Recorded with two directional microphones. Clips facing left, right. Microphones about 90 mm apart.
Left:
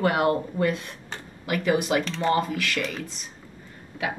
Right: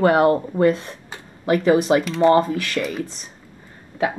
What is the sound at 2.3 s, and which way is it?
Speech, 35° right (ahead or behind).